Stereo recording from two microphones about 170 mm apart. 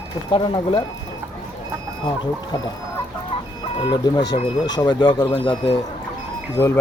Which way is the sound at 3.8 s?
25° left (ahead or behind).